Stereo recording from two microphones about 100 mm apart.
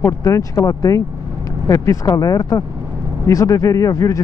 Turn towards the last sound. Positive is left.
turn(degrees=35)  # may be behind; listen again after turning